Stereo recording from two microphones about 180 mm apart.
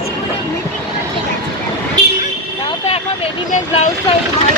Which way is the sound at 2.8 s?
35° left (ahead or behind).